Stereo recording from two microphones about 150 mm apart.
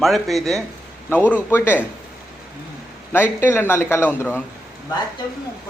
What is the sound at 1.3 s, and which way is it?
Speech, 15° left (ahead or behind).